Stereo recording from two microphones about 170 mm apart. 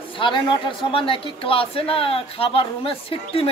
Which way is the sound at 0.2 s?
30° left (ahead or behind).